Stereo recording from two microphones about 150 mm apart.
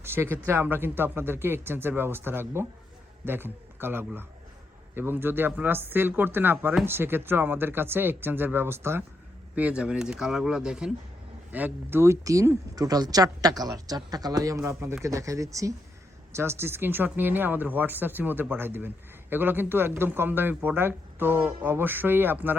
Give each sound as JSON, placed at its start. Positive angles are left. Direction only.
{"t": 0.0, "sound": "speech", "side_deg": -15}